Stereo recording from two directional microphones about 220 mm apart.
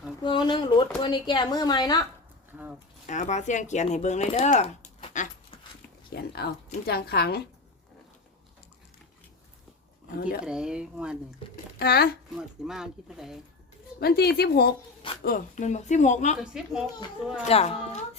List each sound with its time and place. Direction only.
0.2 s speech: 20° left (ahead or behind)
2.5 s speech: 10° right (ahead or behind)
3.1 s speech: 35° left (ahead or behind)
6.1 s a woman's voice: 45° left (ahead or behind)
10.4 s speech: 5° right (ahead or behind)
11.8 s a woman's voice: 45° left (ahead or behind)
12.4 s speech: 5° right (ahead or behind)
14.0 s a woman's voice: 45° left (ahead or behind)
16.4 s speech: 5° right (ahead or behind)
17.4 s speech: 30° left (ahead or behind)